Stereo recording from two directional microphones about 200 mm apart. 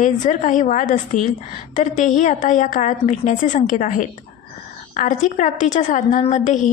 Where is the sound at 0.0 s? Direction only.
40° left (ahead or behind).